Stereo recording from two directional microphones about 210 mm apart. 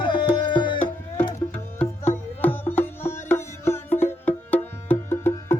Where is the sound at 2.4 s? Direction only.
10° left (ahead or behind).